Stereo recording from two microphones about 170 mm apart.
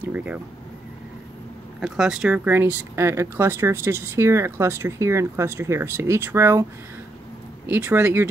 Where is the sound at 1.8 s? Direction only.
5° right (ahead or behind).